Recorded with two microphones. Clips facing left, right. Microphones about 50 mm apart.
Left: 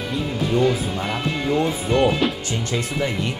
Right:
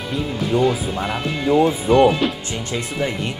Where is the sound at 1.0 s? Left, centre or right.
Centre.